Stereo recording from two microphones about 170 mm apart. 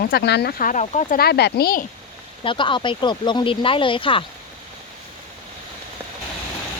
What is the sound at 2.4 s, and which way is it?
Speech, 30° left (ahead or behind).